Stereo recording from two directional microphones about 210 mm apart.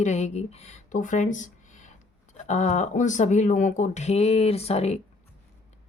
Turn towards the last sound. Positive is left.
turn(degrees=30)  # may be behind; listen again after turning